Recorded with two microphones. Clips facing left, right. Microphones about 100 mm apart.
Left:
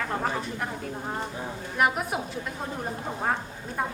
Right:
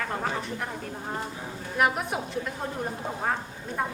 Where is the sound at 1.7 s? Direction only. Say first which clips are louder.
Even; centre (ahead or behind).